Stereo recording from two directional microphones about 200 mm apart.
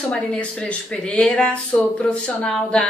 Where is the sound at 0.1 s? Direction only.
5° left (ahead or behind).